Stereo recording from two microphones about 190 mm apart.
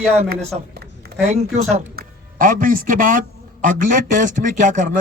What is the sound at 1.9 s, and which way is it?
A man's voice, 45° right (ahead or behind).